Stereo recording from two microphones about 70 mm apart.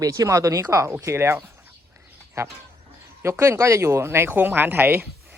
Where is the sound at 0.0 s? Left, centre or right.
Right.